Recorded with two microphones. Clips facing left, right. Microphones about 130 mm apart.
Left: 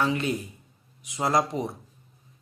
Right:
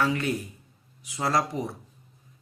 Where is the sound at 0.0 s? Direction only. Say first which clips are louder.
Even; 20° left (ahead or behind).